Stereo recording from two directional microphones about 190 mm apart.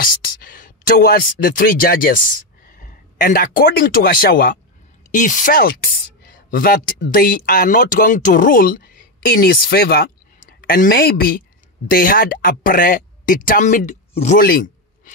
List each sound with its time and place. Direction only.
0.0 s speech: 50° left (ahead or behind)
14.4 s speech: 50° left (ahead or behind)